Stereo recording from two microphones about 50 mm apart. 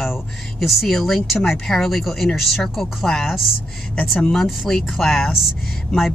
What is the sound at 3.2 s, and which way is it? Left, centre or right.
Speech, centre.